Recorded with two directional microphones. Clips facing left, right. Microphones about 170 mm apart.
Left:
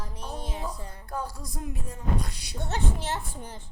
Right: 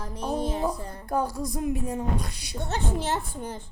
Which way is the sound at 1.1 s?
65° right (ahead or behind).